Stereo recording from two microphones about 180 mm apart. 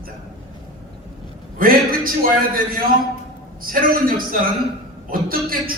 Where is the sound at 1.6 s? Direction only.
55° right (ahead or behind).